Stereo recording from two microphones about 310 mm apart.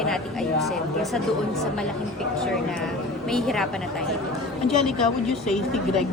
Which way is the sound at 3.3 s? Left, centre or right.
Centre.